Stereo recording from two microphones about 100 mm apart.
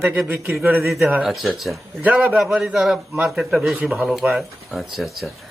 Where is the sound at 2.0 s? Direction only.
15° right (ahead or behind).